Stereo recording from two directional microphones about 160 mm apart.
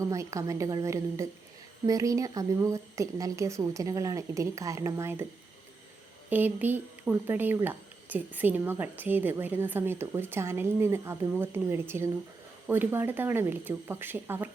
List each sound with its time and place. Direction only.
0.0 s a woman's voice: 20° right (ahead or behind)
6.3 s speech: 10° right (ahead or behind)